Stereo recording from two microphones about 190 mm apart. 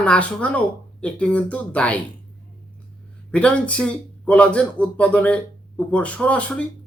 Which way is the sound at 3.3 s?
5° left (ahead or behind).